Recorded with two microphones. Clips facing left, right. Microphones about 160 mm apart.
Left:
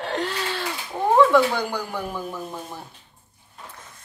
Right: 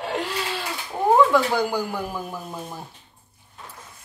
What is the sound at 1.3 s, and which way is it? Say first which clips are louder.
Speech: left 1 dB; 10° right (ahead or behind).